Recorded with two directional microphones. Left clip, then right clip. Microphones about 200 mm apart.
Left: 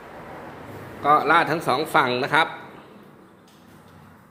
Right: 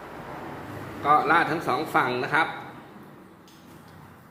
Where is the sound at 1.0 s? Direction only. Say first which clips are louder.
Left 3 dB; 45° left (ahead or behind).